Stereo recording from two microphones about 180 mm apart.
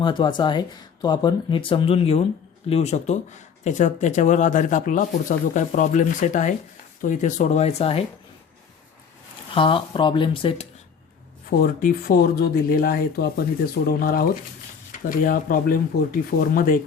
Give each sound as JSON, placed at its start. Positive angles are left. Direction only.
{"t": 0.0, "sound": "speech", "side_deg": 25}
{"t": 9.6, "sound": "speech", "side_deg": 30}
{"t": 11.4, "sound": "speech", "side_deg": 55}